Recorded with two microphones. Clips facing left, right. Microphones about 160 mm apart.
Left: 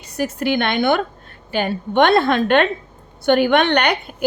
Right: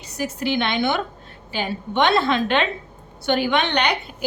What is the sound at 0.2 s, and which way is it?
A woman's voice, 55° left (ahead or behind).